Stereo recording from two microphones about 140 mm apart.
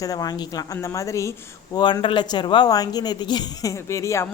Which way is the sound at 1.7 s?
35° left (ahead or behind).